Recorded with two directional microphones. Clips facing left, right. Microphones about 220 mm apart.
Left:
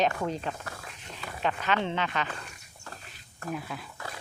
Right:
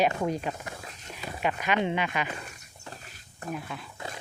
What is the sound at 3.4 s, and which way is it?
Speech, 20° right (ahead or behind).